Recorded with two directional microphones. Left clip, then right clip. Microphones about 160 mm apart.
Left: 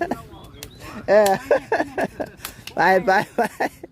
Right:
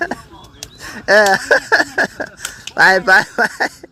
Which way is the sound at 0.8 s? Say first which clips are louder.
Right 5 dB; centre (ahead or behind).